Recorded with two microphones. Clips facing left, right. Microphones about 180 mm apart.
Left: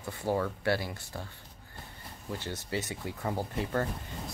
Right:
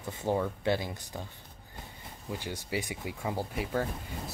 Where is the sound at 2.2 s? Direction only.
15° right (ahead or behind).